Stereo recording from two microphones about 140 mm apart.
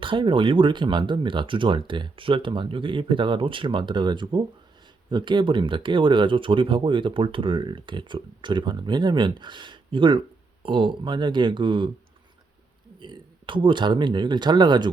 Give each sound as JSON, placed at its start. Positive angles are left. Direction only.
{"t": 0.0, "sound": "speech", "side_deg": -35}
{"t": 13.0, "sound": "speech", "side_deg": -35}